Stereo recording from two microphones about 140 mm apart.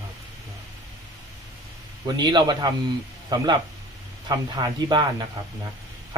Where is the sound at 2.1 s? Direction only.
30° right (ahead or behind).